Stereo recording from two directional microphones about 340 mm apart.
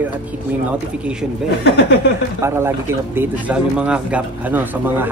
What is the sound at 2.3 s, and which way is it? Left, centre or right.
Speech, centre.